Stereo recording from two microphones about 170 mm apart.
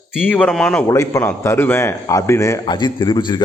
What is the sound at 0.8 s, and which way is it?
A man's voice, 20° left (ahead or behind).